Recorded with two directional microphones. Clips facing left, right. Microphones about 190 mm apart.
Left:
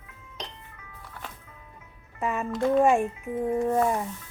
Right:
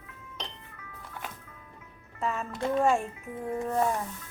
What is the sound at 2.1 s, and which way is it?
A child's voice, 15° left (ahead or behind).